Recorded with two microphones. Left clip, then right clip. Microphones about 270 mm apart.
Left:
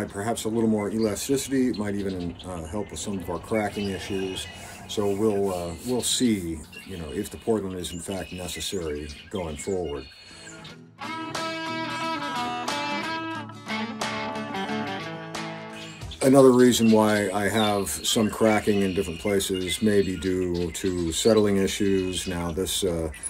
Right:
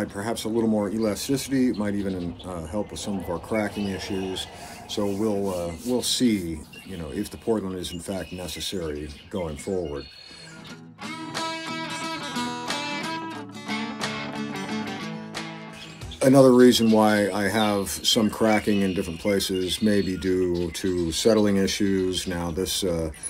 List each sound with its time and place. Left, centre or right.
0.0 s speech: centre
7.5 s speech: centre
11.1 s music: centre
16.2 s speech: centre